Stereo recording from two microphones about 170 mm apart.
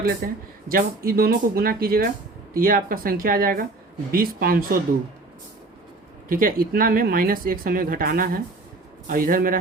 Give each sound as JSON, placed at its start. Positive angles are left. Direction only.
{"t": 0.2, "sound": "speech", "side_deg": -60}
{"t": 6.2, "sound": "speech", "side_deg": -55}